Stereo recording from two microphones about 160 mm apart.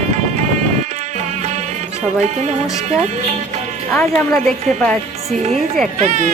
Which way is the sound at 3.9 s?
5° left (ahead or behind).